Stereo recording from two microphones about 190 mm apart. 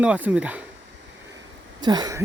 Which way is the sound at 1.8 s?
20° right (ahead or behind).